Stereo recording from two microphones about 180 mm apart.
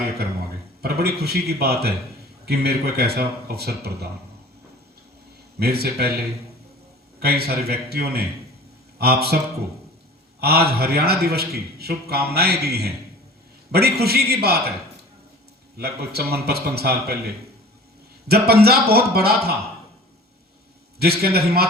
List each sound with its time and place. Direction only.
0.8 s a man's voice: 60° right (ahead or behind)
5.5 s a man's voice: 60° right (ahead or behind)
7.2 s a man's voice: 60° right (ahead or behind)
10.4 s a man's voice: 60° right (ahead or behind)
15.8 s a man's voice: 60° right (ahead or behind)
18.3 s a man's voice: 60° right (ahead or behind)
21.0 s a man's voice: 60° right (ahead or behind)